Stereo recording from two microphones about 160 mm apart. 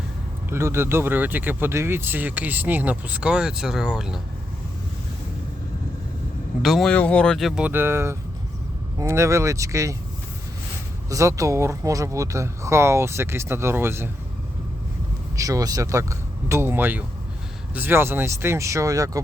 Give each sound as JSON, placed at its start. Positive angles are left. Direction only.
{"t": 0.5, "sound": "speech", "side_deg": -15}
{"t": 6.6, "sound": "speech", "side_deg": 0}
{"t": 11.1, "sound": "speech", "side_deg": -20}
{"t": 15.4, "sound": "speech", "side_deg": -20}